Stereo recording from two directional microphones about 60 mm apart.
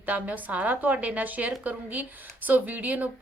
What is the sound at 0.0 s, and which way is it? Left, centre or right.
Speech, right.